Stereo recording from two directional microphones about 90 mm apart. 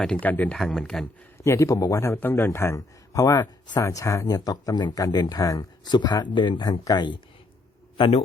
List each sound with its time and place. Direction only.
0.0 s speech: 15° left (ahead or behind)
0.6 s speech: 5° left (ahead or behind)
1.4 s a man's voice: 35° left (ahead or behind)
2.1 s speech: 25° left (ahead or behind); by 7.2 s 55° left (ahead or behind)
7.9 s a man's voice: 85° left